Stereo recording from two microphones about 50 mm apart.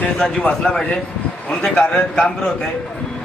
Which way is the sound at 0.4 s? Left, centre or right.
Left.